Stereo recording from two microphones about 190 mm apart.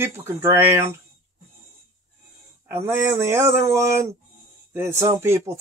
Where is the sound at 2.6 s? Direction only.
15° right (ahead or behind).